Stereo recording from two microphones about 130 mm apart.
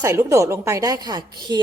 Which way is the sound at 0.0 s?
25° right (ahead or behind).